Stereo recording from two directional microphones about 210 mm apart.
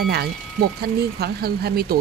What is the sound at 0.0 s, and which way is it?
Speech, 50° right (ahead or behind).